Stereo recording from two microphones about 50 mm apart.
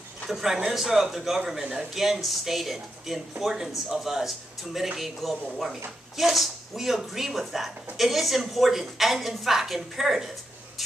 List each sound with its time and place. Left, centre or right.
0.3 s a man's voice: centre